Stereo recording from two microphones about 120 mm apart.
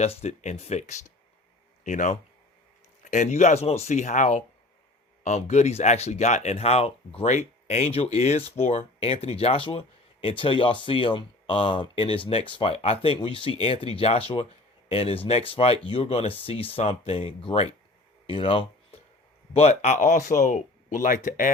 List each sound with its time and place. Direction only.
0.0 s speech: 60° left (ahead or behind)
1.8 s speech: 90° left
5.2 s speech: 70° left (ahead or behind)
7.3 s speech: 70° left (ahead or behind); by 18.9 s 50° left (ahead or behind)
19.5 s speech: 70° left (ahead or behind); by 21.5 s 90° left